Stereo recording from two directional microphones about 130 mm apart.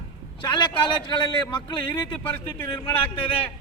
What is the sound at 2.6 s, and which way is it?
Speech, 35° left (ahead or behind).